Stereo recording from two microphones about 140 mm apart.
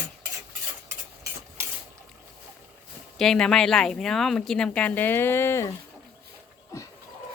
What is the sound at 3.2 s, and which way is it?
Speech, 5° left (ahead or behind).